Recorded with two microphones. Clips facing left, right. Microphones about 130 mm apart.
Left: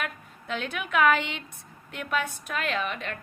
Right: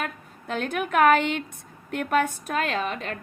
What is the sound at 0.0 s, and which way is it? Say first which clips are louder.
A woman's voice: right 3 dB; 45° right (ahead or behind).